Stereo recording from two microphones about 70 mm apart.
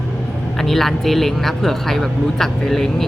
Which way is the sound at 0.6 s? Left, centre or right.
Centre.